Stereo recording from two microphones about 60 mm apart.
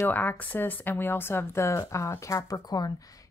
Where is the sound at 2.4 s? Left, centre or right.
Left.